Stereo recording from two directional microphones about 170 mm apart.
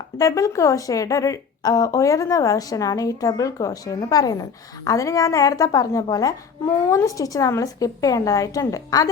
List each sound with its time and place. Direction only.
0.2 s a woman's voice: 20° left (ahead or behind)